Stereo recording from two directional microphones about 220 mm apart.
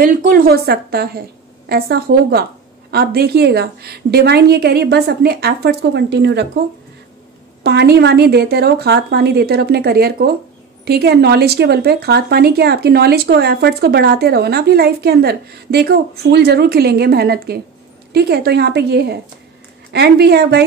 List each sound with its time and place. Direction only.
0.0 s speech: 40° right (ahead or behind)
7.6 s speech: 50° right (ahead or behind)